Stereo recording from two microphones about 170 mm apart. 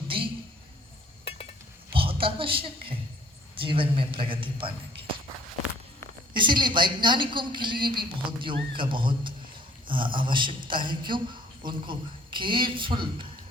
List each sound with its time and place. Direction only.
1.9 s a sound: 30° right (ahead or behind)
3.6 s a man's voice: 30° right (ahead or behind)
6.3 s a woman's voice: 30° right (ahead or behind)